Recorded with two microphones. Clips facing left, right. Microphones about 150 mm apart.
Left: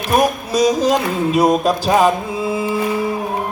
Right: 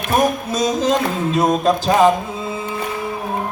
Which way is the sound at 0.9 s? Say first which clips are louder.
Left 2 dB; 15° left (ahead or behind).